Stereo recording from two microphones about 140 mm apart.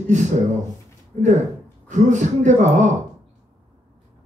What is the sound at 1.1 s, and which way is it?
Speech, 55° right (ahead or behind).